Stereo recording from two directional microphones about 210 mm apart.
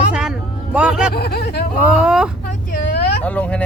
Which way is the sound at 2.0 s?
5° right (ahead or behind).